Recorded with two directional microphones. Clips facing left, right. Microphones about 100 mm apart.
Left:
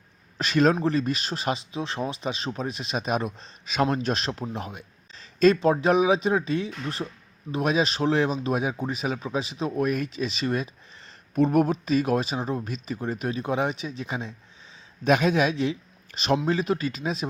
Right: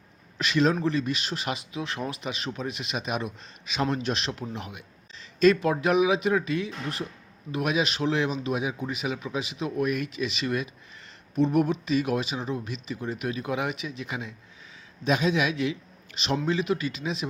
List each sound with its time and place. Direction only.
0.3 s speech: 40° left (ahead or behind)
11.3 s speech: 50° left (ahead or behind); by 14.3 s 30° left (ahead or behind)
15.0 s a man's voice: 55° left (ahead or behind)
15.4 s a man's voice: 35° left (ahead or behind)